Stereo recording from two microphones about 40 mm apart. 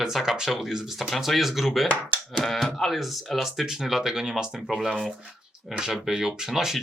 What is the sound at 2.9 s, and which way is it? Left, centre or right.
Speech, centre.